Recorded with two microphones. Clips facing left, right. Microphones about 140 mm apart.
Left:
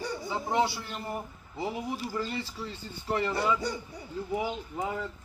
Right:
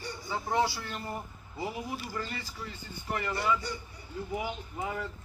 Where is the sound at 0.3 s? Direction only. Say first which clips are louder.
Left 1 dB; 20° left (ahead or behind).